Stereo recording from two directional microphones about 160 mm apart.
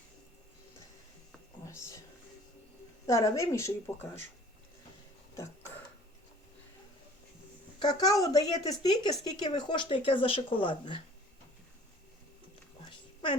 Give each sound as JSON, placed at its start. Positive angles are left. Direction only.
{"t": 1.6, "sound": "speech", "side_deg": 20}
{"t": 3.1, "sound": "speech", "side_deg": 20}
{"t": 7.8, "sound": "speech", "side_deg": 25}